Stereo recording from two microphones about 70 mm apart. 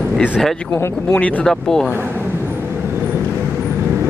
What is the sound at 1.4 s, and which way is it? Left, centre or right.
Speech, centre.